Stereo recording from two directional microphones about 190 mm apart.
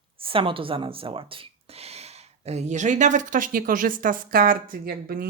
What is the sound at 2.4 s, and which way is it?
Speech, 35° right (ahead or behind).